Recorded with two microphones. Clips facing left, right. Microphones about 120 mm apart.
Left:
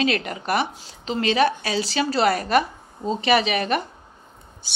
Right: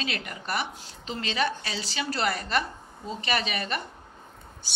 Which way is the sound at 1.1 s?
90° left.